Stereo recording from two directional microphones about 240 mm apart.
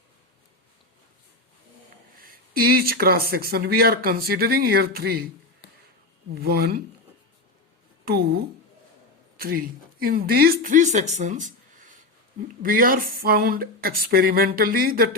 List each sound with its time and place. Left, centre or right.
2.1 s speech: right
6.3 s speech: right
8.0 s speech: right
9.4 s speech: right